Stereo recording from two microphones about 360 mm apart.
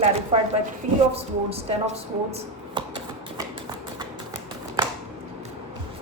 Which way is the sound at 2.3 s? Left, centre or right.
Centre.